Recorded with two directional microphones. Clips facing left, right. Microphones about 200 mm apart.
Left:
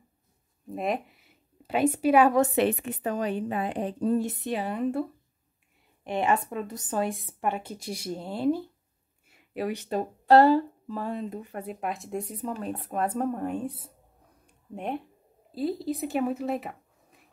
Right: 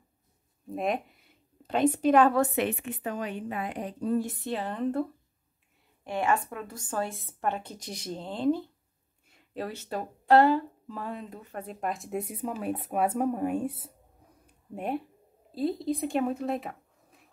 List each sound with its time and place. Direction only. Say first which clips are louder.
0.7 s a woman's voice: even; centre (ahead or behind)
2.4 s a woman's voice: left 4 dB; 30° left (ahead or behind); by 5.0 s 10° left (ahead or behind)
6.0 s speech: left 2 dB; 20° left (ahead or behind)
10.2 s speech: left 3 dB; 35° left (ahead or behind)
11.3 s a woman's voice: left 4 dB; 10° left (ahead or behind); by 13.9 s 10° right (ahead or behind)
14.4 s a sound: even; 5° right (ahead or behind)
15.5 s speech: even; centre (ahead or behind)